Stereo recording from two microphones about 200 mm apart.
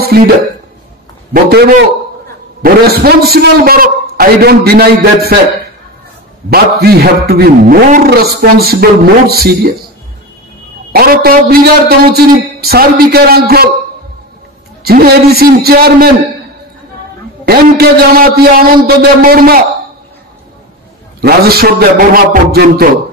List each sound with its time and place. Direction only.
0.1 s a man's voice: 50° right (ahead or behind)
1.3 s a man's voice: 55° right (ahead or behind)
6.5 s a man's voice: 50° right (ahead or behind)
10.9 s a man's voice: 50° right (ahead or behind)
14.8 s a man's voice: 50° right (ahead or behind)
17.5 s a man's voice: 50° right (ahead or behind)
21.2 s a man's voice: 50° right (ahead or behind)